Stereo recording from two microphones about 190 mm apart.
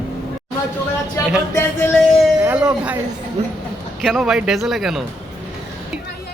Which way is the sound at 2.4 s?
10° right (ahead or behind).